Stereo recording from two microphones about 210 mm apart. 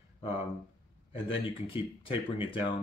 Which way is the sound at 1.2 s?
25° left (ahead or behind).